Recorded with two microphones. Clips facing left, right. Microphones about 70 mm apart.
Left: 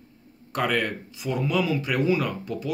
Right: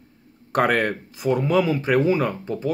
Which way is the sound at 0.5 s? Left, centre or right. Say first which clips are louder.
Right 5 dB; right.